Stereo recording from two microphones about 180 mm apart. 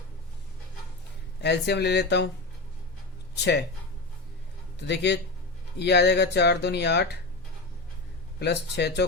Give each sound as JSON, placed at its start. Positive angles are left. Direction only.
{"t": 1.4, "sound": "speech", "side_deg": 70}
{"t": 3.3, "sound": "speech", "side_deg": 70}
{"t": 4.9, "sound": "speech", "side_deg": 70}
{"t": 8.4, "sound": "speech", "side_deg": 70}